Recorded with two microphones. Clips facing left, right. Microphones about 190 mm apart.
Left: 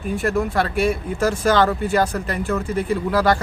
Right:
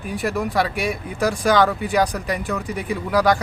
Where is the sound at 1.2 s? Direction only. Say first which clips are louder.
Even; 15° right (ahead or behind).